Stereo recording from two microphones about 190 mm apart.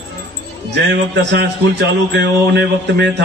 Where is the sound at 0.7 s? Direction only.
65° right (ahead or behind).